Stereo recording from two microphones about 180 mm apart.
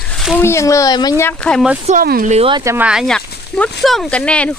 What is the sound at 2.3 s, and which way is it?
Speech, 35° right (ahead or behind).